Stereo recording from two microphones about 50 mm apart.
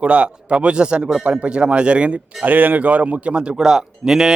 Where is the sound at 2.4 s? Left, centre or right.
Right; by 4.3 s centre.